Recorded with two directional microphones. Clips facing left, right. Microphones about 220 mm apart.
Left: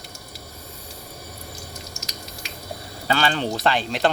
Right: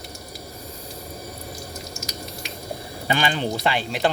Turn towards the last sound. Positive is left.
turn(degrees=-10)  # may be behind; listen again after turning